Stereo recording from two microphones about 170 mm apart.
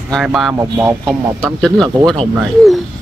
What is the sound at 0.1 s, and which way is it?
Speech, centre (ahead or behind).